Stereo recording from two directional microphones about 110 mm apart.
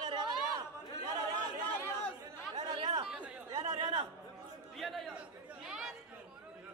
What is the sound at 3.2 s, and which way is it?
Chatter, 10° right (ahead or behind).